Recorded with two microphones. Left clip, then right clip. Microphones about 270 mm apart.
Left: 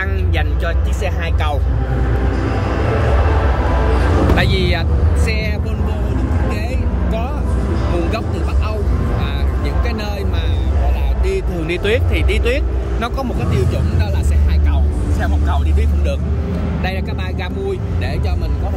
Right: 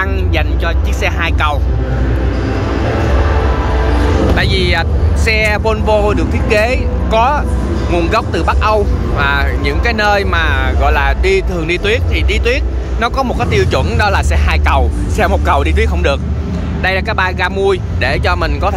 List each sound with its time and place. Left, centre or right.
1.0 s speech: centre
4.4 s speech: centre
15.8 s speech: centre